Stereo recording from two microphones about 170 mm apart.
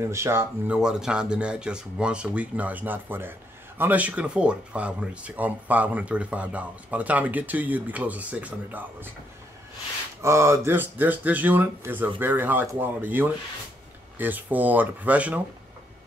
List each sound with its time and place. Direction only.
0.0 s speech: 15° right (ahead or behind)
0.7 s speech: 5° right (ahead or behind)
10.2 s speech: 15° right (ahead or behind)